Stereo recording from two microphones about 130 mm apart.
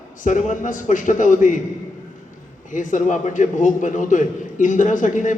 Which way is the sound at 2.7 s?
80° left.